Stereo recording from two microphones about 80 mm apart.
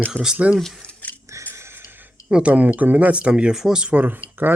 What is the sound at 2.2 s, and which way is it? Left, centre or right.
Speech, centre.